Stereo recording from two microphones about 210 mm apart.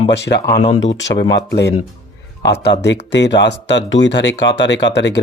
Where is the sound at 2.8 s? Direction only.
55° left (ahead or behind).